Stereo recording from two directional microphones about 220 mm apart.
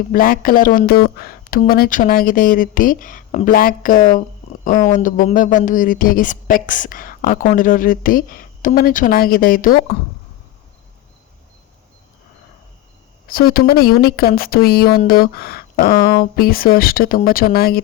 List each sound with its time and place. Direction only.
0.1 s a woman's voice: 40° left (ahead or behind)
13.2 s a woman's voice: 40° left (ahead or behind)